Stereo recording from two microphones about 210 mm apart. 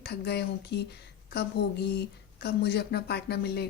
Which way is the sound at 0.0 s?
50° left (ahead or behind).